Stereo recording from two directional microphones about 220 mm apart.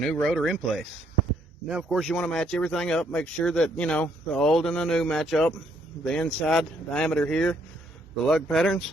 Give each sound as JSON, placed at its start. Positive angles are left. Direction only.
{"t": 0.0, "sound": "speech", "side_deg": 0}